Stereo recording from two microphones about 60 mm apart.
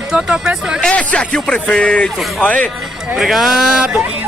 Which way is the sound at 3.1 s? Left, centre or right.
Centre.